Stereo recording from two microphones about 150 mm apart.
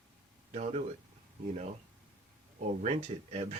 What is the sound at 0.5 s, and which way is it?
Speech, 45° right (ahead or behind).